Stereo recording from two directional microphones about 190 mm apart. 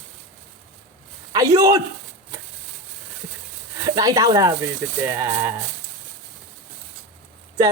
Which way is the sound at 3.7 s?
20° right (ahead or behind).